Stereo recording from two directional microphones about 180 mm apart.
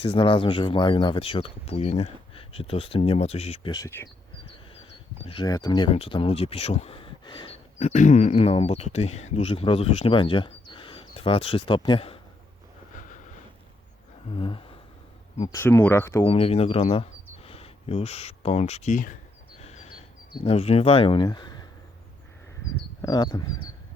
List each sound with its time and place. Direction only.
0.0 s speech: 30° left (ahead or behind)
3.7 s speech: 20° left (ahead or behind)
5.2 s speech: 25° left (ahead or behind)
13.0 s a sound: 45° left (ahead or behind)
14.3 s speech: 30° left (ahead or behind)
15.5 s speech: 15° left (ahead or behind)
16.2 s speech: 30° left (ahead or behind)
19.6 s a sound: 35° left (ahead or behind)
20.3 s speech: 30° left (ahead or behind)
22.7 s speech: 20° left (ahead or behind)